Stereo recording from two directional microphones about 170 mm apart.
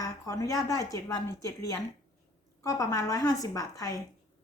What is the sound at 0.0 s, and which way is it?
A woman's voice, 20° left (ahead or behind).